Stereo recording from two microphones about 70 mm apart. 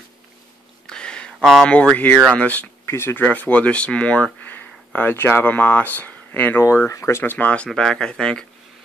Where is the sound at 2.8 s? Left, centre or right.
Left.